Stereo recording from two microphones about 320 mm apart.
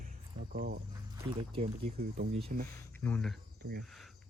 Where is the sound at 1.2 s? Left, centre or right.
Centre.